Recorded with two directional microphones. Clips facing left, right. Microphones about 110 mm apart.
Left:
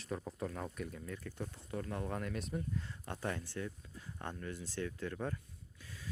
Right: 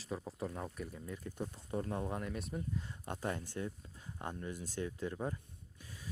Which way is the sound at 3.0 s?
20° right (ahead or behind).